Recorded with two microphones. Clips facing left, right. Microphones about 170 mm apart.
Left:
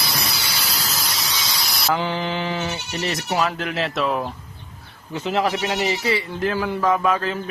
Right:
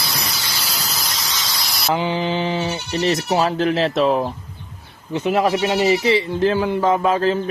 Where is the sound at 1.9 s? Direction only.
15° right (ahead or behind).